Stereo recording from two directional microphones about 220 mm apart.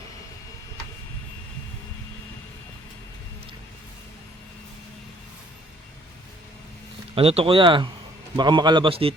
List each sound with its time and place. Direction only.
7.2 s a man's voice: 25° right (ahead or behind)